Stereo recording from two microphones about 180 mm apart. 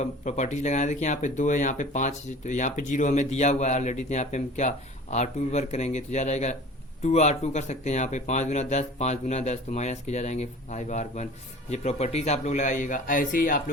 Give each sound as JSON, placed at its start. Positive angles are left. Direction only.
{"t": 0.0, "sound": "a man's voice", "side_deg": 40}